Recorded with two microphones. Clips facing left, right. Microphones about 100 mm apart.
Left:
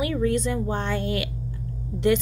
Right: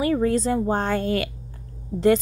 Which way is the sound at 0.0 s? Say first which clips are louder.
Right 3 dB; 40° right (ahead or behind).